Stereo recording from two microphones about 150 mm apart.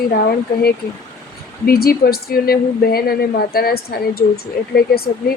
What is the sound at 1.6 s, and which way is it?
Speech, 85° left.